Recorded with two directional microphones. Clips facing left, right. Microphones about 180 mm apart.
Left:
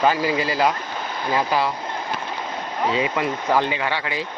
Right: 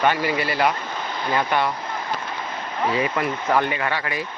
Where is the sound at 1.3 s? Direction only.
5° left (ahead or behind).